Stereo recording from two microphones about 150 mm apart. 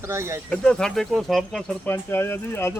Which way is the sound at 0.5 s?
5° left (ahead or behind).